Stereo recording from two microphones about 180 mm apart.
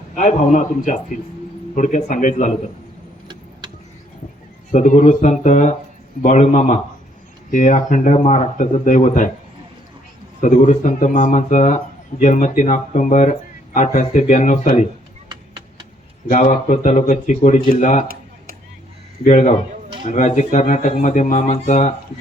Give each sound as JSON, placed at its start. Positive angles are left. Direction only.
{"t": 0.2, "sound": "speech", "side_deg": 45}
{"t": 4.7, "sound": "speech", "side_deg": 45}
{"t": 10.4, "sound": "speech", "side_deg": 45}
{"t": 15.3, "sound": "chop", "side_deg": -25}
{"t": 16.3, "sound": "speech", "side_deg": 45}
{"t": 19.2, "sound": "speech", "side_deg": 45}